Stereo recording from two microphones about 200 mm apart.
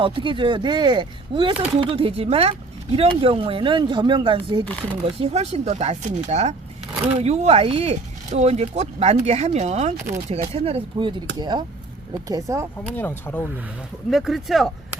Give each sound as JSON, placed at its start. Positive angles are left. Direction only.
{"t": 0.0, "sound": "speech", "side_deg": -25}
{"t": 4.6, "sound": "speech", "side_deg": 5}
{"t": 5.0, "sound": "speech", "side_deg": -30}
{"t": 13.0, "sound": "speech", "side_deg": 10}
{"t": 14.1, "sound": "speech", "side_deg": 0}